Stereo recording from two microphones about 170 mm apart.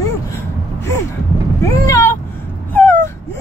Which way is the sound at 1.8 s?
15° left (ahead or behind).